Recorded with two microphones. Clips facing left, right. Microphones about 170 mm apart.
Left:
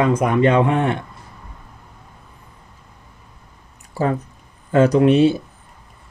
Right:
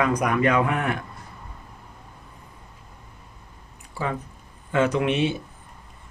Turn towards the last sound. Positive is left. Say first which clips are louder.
# left 9 dB
turn(degrees=35)  # may be behind; listen again after turning